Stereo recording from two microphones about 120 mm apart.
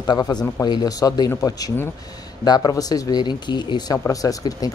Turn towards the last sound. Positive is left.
turn(degrees=30)  # may be behind; listen again after turning